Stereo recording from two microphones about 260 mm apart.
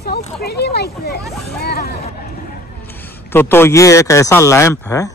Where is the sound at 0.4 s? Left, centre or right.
Left.